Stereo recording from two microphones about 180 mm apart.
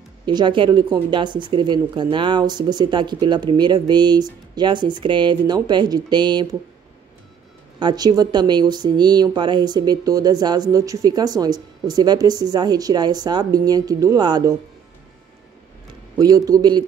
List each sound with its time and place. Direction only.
0.2 s speech: 25° right (ahead or behind)
7.8 s speech: 20° right (ahead or behind)
16.2 s speech: 20° right (ahead or behind)